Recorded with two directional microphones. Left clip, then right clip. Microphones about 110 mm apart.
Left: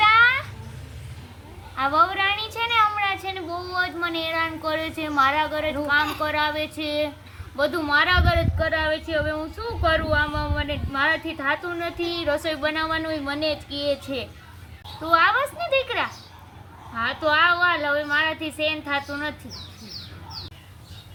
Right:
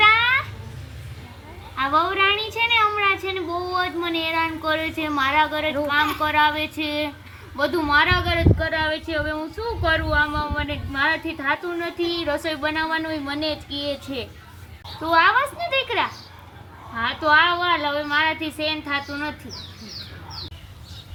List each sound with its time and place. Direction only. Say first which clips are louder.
0.0 s a sound: even; 25° left (ahead or behind)
1.7 s a woman's voice: even; 25° left (ahead or behind)
15.0 s a woman's voice: right 2 dB; 10° left (ahead or behind)